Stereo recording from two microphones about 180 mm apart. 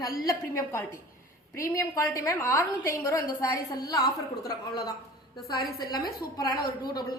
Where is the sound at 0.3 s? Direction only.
15° left (ahead or behind).